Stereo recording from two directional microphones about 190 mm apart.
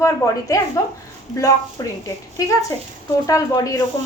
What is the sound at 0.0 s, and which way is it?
Speech, 15° left (ahead or behind).